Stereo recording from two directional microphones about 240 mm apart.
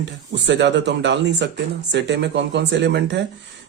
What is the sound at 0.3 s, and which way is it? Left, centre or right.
Speech, right.